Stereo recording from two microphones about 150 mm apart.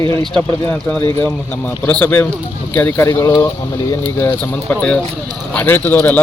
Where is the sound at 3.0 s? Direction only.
25° left (ahead or behind).